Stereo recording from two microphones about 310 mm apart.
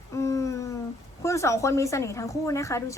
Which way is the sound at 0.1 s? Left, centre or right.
Centre.